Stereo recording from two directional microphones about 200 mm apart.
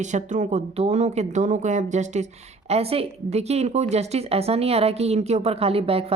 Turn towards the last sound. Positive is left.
turn(degrees=-30)  # may be behind; listen again after turning